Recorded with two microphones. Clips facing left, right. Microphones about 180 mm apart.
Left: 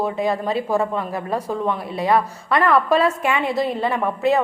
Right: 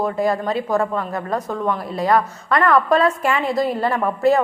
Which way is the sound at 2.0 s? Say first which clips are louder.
Right 1 dB; 5° left (ahead or behind).